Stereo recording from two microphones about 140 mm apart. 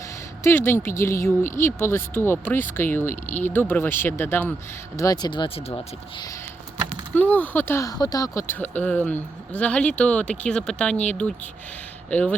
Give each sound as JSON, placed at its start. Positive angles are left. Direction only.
{"t": 0.4, "sound": "speech", "side_deg": 15}
{"t": 4.9, "sound": "speech", "side_deg": 25}
{"t": 7.1, "sound": "speech", "side_deg": 10}